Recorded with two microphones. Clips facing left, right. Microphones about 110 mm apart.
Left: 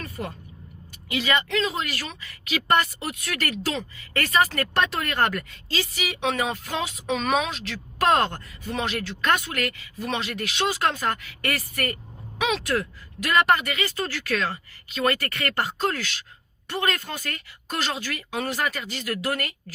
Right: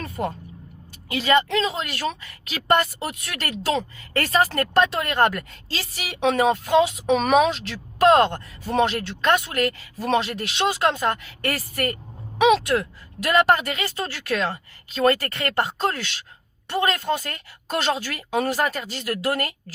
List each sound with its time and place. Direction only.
1.1 s speech: 35° right (ahead or behind)
8.1 s speech: 20° right (ahead or behind)
8.6 s speech: 35° right (ahead or behind)